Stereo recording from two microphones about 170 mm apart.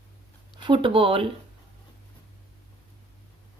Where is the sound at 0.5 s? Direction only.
30° right (ahead or behind).